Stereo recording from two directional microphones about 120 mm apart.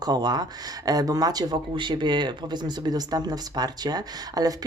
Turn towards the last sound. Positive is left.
turn(degrees=-35)  # may be behind; listen again after turning